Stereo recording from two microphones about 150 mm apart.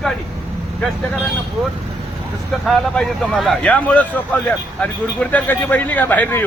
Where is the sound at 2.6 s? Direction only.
Centre (ahead or behind).